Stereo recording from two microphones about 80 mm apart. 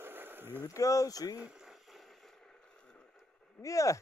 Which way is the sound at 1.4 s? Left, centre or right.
Centre.